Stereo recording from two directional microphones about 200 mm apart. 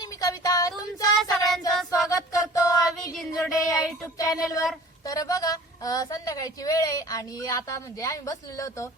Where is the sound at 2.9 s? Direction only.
Centre (ahead or behind).